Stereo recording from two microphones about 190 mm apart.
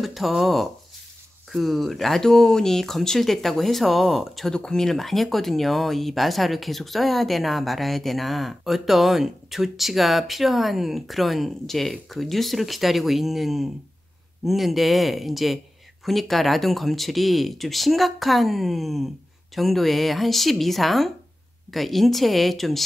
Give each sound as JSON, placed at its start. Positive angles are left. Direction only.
{"t": 0.0, "sound": "speech", "side_deg": 0}